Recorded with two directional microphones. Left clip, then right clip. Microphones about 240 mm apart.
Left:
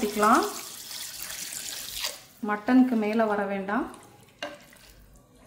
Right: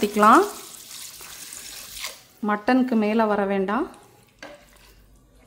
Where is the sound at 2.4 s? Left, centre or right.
Right.